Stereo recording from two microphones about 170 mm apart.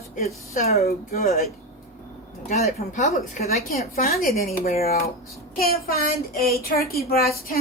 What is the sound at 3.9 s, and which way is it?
A woman's voice, 60° left (ahead or behind).